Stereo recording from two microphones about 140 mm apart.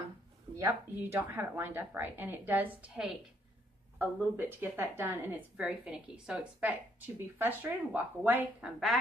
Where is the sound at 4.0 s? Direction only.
15° right (ahead or behind).